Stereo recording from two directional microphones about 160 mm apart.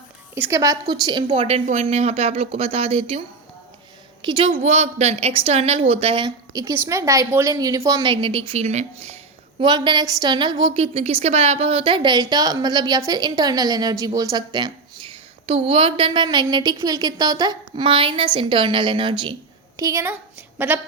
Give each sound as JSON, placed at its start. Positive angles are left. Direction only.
{"t": 0.3, "sound": "a woman's voice", "side_deg": -15}
{"t": 4.6, "sound": "a woman's voice", "side_deg": -40}
{"t": 9.6, "sound": "a woman's voice", "side_deg": -30}
{"t": 10.9, "sound": "a woman's voice", "side_deg": -40}